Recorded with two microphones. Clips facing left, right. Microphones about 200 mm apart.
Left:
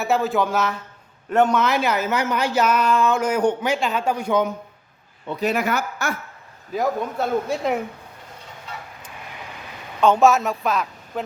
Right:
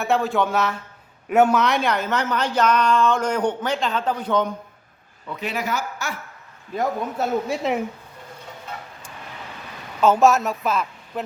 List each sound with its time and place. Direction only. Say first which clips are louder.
0.0 s speech: even; centre (ahead or behind)
5.3 s a man's voice: left 7 dB; 40° left (ahead or behind)
5.5 s speech: left 3 dB; 55° left (ahead or behind)
6.7 s speech: left 1 dB; centre (ahead or behind)
10.0 s speech: even; centre (ahead or behind)